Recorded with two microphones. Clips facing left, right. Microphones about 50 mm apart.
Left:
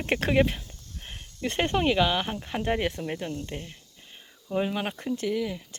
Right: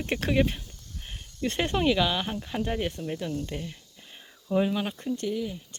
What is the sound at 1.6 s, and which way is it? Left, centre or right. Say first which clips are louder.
Speech: left 1 dB; left.